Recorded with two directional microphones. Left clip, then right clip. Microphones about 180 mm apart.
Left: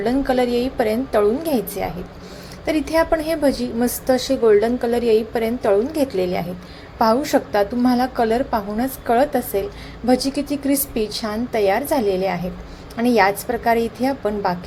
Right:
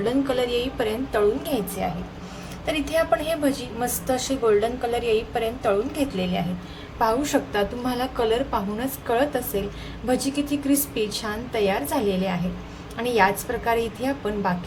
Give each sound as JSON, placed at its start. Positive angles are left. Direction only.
{"t": 0.0, "sound": "a woman's voice", "side_deg": 30}